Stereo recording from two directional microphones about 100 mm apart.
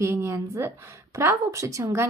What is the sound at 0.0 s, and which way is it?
A woman's voice, 25° right (ahead or behind).